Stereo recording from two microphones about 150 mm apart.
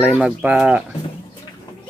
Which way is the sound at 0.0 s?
5° right (ahead or behind).